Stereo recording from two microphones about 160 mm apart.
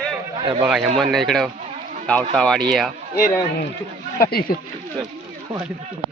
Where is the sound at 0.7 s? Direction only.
5° right (ahead or behind).